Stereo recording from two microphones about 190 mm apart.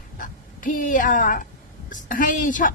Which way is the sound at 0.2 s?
45° left (ahead or behind).